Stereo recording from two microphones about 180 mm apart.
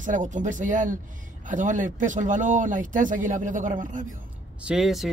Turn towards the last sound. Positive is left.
turn(degrees=0)  # may be behind; listen again after turning